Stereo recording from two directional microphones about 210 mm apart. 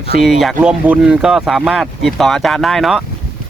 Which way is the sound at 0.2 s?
Centre (ahead or behind).